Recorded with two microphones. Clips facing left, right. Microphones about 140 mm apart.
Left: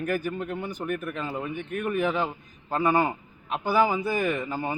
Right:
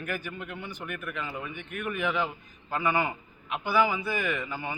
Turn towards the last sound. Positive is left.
turn(degrees=40)  # may be behind; listen again after turning